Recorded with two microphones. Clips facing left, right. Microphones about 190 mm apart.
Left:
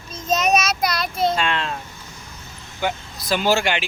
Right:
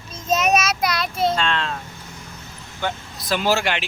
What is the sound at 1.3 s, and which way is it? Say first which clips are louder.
Speech: even; 10° left (ahead or behind).